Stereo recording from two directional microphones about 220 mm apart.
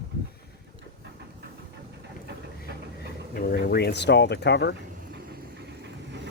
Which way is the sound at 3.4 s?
40° left (ahead or behind).